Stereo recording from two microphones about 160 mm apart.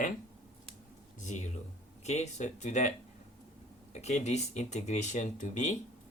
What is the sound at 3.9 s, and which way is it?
Speech, 45° left (ahead or behind).